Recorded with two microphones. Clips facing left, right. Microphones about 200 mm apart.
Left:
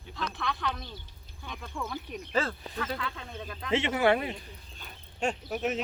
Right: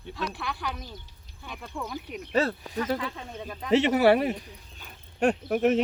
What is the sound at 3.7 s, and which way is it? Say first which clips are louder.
Speech: right 5 dB; 40° right (ahead or behind).